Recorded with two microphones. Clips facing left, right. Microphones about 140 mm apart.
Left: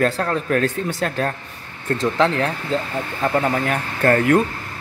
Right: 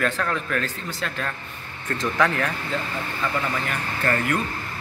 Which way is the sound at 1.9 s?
30° left (ahead or behind).